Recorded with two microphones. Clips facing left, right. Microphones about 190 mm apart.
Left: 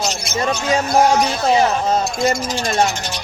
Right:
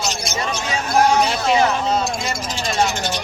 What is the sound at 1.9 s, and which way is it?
Speech, 45° left (ahead or behind).